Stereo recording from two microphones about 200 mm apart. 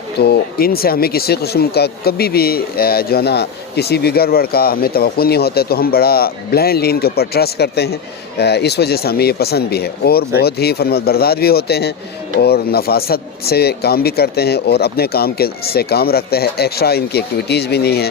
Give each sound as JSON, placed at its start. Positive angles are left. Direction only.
{"t": 0.2, "sound": "speech", "side_deg": 50}